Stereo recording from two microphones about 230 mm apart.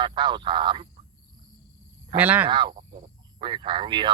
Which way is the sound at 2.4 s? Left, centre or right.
Centre.